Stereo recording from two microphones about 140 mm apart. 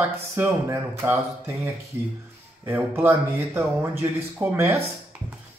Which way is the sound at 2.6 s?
15° right (ahead or behind).